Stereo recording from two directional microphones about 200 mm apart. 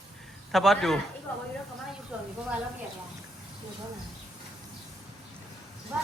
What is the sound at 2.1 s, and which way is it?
Speech, 5° right (ahead or behind).